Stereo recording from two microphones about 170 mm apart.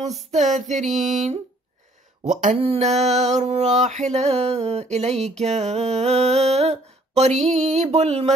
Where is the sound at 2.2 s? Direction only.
40° right (ahead or behind).